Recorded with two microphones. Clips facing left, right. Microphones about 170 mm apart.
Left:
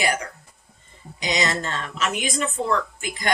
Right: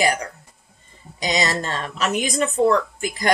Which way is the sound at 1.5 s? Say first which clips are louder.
Right 2 dB; 35° right (ahead or behind).